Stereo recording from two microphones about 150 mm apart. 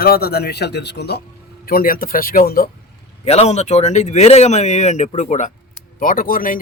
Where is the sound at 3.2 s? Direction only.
45° left (ahead or behind).